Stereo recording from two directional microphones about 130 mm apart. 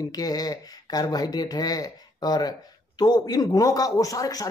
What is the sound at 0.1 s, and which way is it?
Speech, 30° left (ahead or behind).